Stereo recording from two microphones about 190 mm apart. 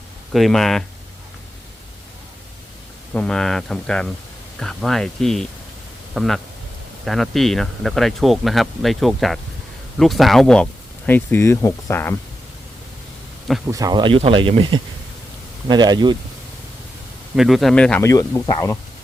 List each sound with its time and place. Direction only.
0.3 s speech: centre (ahead or behind)
3.1 s speech: 5° left (ahead or behind)
13.7 s speech: 20° right (ahead or behind)
17.3 s speech: centre (ahead or behind)
18.1 s speech: 15° left (ahead or behind)